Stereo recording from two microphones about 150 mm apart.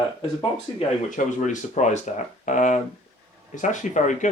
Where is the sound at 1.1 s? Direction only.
55° left (ahead or behind).